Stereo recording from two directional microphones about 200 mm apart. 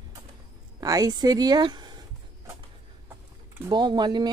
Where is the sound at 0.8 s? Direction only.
20° right (ahead or behind).